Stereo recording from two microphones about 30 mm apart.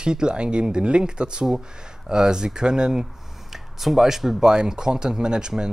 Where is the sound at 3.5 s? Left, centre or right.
Centre.